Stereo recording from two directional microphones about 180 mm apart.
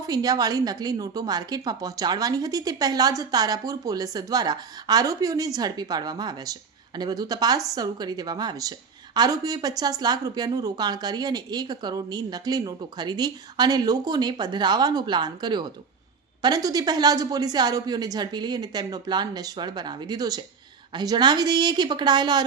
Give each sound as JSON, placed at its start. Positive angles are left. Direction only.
{"t": 0.1, "sound": "a woman's voice", "side_deg": -20}